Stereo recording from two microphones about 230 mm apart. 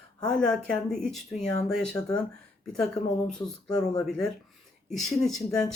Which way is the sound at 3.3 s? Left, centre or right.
Centre.